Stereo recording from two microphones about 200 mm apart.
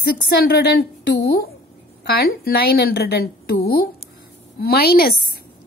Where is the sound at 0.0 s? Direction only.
50° left (ahead or behind).